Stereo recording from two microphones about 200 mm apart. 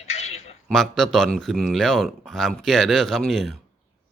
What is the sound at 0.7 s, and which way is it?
A man's voice, centre (ahead or behind).